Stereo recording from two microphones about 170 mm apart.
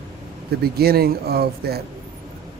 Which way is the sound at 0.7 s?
65° right (ahead or behind).